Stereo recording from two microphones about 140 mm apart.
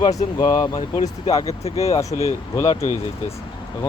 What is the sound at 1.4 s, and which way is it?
Speech, 50° left (ahead or behind).